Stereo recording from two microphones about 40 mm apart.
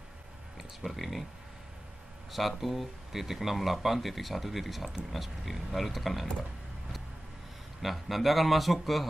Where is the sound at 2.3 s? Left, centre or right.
Centre.